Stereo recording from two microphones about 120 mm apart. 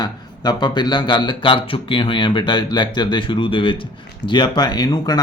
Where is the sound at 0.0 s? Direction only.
35° left (ahead or behind).